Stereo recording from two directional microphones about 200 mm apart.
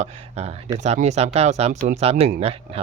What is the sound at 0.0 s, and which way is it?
A man's voice, 30° right (ahead or behind).